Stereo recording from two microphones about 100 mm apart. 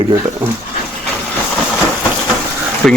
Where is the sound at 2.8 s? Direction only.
Centre (ahead or behind).